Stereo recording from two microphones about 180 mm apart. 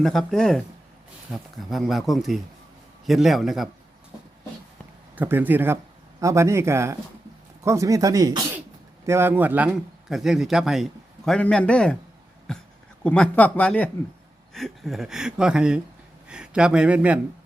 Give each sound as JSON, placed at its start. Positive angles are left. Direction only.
{"t": 0.0, "sound": "a man's voice", "side_deg": 0}
{"t": 5.1, "sound": "a man's voice", "side_deg": -10}